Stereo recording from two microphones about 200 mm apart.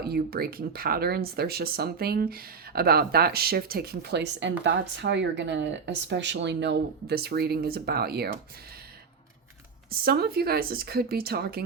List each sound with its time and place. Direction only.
0.0 s speech: 50° right (ahead or behind)
9.9 s speech: 50° right (ahead or behind)